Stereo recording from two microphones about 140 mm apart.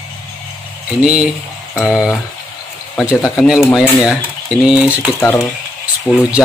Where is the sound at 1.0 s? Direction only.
5° right (ahead or behind).